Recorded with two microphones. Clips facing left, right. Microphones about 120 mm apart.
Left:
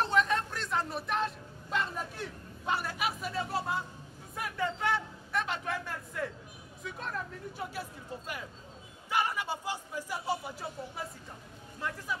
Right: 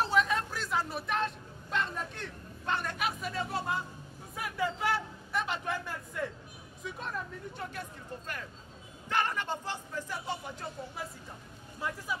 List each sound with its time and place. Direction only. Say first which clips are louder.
0.0 s a sound: even; 5° right (ahead or behind)
6.8 s speech: even; centre (ahead or behind)
9.1 s speech: even; 10° left (ahead or behind)